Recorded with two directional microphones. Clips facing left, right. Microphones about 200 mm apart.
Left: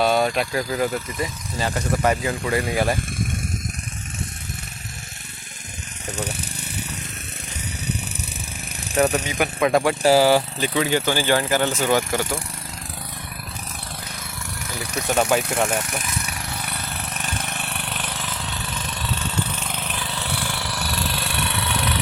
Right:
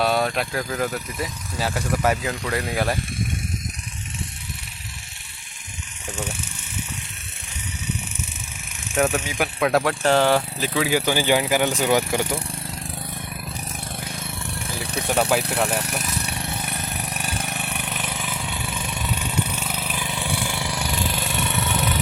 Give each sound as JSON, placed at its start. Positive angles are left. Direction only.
{"t": 0.0, "sound": "speech", "side_deg": 0}
{"t": 6.1, "sound": "vehicle", "side_deg": 35}
{"t": 9.0, "sound": "speech", "side_deg": 0}
{"t": 14.6, "sound": "vehicle", "side_deg": -30}
{"t": 14.9, "sound": "speech", "side_deg": -5}
{"t": 15.4, "sound": "speech", "side_deg": -35}
{"t": 16.0, "sound": "vehicle", "side_deg": -35}